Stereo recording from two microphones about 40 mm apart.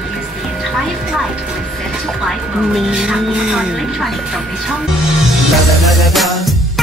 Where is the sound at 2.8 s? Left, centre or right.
Centre.